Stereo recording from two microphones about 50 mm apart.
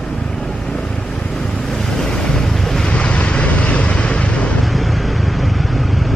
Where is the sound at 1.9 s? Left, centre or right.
Centre.